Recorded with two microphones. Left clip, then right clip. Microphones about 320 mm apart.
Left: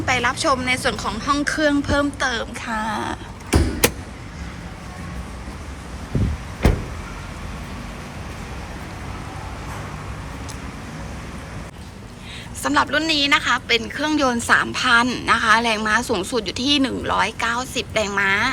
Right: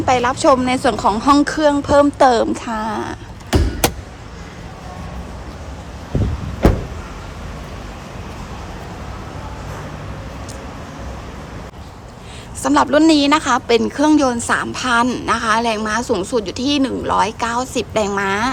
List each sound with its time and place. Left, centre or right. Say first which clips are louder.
0.0 s a woman's voice: right 6 dB; centre
12.6 s a woman's voice: right 6 dB; centre